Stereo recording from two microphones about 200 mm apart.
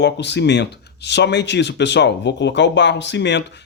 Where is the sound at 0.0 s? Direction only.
60° left (ahead or behind).